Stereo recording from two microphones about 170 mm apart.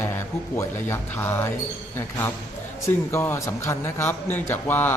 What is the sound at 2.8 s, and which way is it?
A man's voice, 15° left (ahead or behind).